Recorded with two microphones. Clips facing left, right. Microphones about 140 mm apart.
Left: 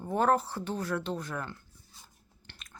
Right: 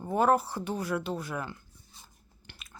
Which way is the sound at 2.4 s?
5° right (ahead or behind).